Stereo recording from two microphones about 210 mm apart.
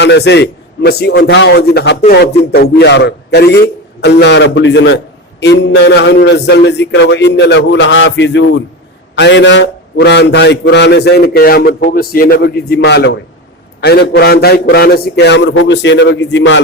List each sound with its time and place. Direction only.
0.0 s a man's voice: 55° left (ahead or behind)